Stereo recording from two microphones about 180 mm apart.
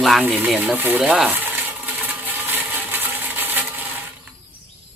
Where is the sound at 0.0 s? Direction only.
Centre (ahead or behind).